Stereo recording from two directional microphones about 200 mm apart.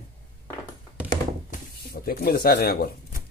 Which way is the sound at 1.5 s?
50° left (ahead or behind).